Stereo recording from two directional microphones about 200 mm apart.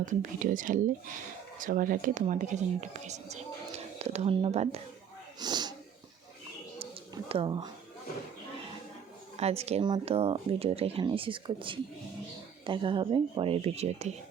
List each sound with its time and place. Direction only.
0.0 s speech: 40° right (ahead or behind)
5.4 s speech: 20° right (ahead or behind)
7.3 s speech: 25° right (ahead or behind)
9.4 s speech: 30° right (ahead or behind)